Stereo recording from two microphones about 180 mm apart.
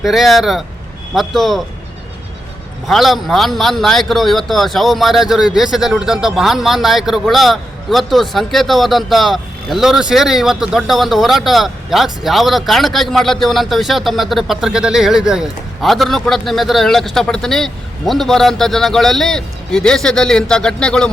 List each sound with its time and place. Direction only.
0.0 s a man's voice: centre (ahead or behind)
2.8 s a man's voice: centre (ahead or behind)